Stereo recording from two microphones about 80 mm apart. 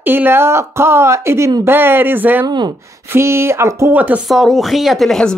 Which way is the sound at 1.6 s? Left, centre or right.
Right.